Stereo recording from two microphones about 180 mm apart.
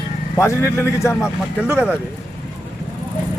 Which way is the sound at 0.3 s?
15° left (ahead or behind).